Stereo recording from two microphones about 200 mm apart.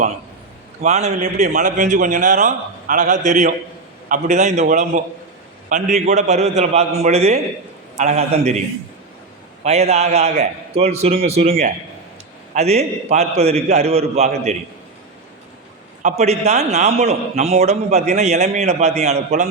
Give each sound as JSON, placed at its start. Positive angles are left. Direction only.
{"t": 0.8, "sound": "a man's voice", "side_deg": -35}
{"t": 9.6, "sound": "a man's voice", "side_deg": -30}
{"t": 12.5, "sound": "a man's voice", "side_deg": -35}
{"t": 16.0, "sound": "a man's voice", "side_deg": -35}